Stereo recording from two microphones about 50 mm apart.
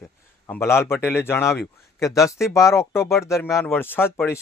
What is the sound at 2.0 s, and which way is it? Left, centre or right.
Speech, left.